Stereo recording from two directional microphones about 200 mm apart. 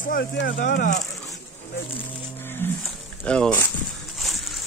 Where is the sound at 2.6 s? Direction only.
10° left (ahead or behind).